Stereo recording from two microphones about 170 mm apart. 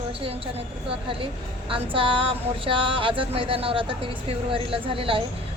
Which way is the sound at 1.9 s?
30° right (ahead or behind).